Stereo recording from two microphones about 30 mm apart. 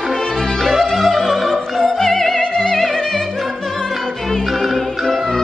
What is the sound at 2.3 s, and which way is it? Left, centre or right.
Opera, left.